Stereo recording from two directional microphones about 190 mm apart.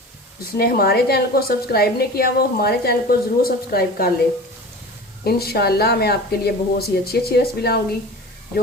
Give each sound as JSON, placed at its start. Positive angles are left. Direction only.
{"t": 0.5, "sound": "a woman's voice", "side_deg": 55}
{"t": 5.2, "sound": "speech", "side_deg": 55}